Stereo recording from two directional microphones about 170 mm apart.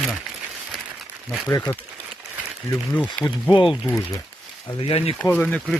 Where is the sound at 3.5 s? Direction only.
30° left (ahead or behind).